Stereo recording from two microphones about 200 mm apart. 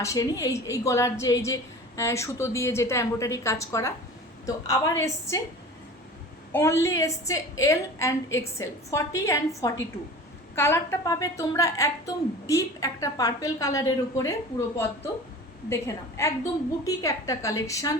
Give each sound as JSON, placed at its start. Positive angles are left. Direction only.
{"t": 0.0, "sound": "a woman's voice", "side_deg": 15}
{"t": 6.5, "sound": "a woman's voice", "side_deg": 10}
{"t": 15.7, "sound": "a woman's voice", "side_deg": 15}